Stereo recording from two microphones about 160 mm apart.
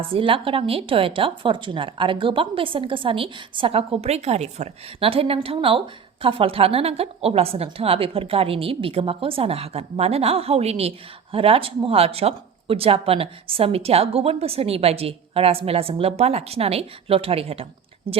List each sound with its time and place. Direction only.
0.1 s a woman's voice: 35° right (ahead or behind)